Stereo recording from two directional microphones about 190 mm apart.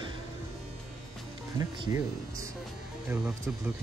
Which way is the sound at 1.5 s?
20° right (ahead or behind).